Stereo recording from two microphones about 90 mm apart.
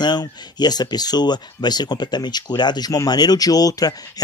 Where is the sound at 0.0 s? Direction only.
50° left (ahead or behind).